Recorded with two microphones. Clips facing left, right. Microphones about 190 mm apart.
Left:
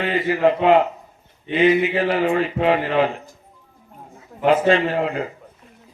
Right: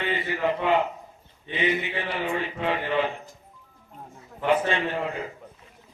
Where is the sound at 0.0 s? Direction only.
90° left.